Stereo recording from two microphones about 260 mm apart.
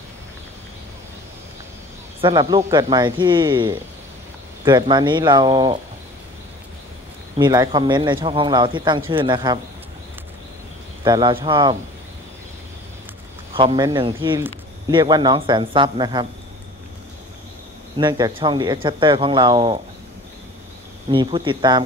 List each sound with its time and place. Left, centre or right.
2.2 s speech: centre
7.3 s speech: centre
11.1 s speech: centre
13.6 s speech: centre
17.9 s speech: centre
21.1 s speech: centre